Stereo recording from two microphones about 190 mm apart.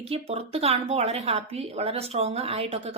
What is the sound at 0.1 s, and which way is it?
A woman's voice, 30° right (ahead or behind).